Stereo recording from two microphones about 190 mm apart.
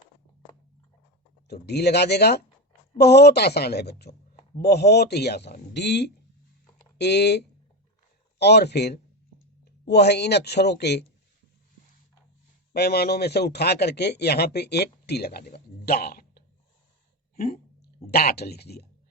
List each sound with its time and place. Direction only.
1.5 s a man's voice: 60° left (ahead or behind)
12.7 s a man's voice: 55° left (ahead or behind)
17.3 s a sound: 50° left (ahead or behind)
18.1 s a man's voice: 55° left (ahead or behind)